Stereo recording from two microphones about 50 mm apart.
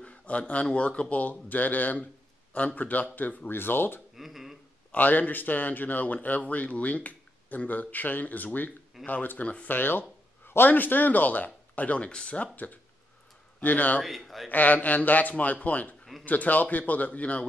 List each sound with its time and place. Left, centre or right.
0.0 s speech: left
4.1 s a sound: centre
4.9 s speech: left
13.6 s speech: left
14.0 s a man's voice: centre
14.5 s speech: left